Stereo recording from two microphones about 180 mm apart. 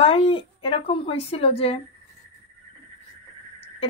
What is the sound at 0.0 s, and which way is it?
A woman's voice, 30° left (ahead or behind).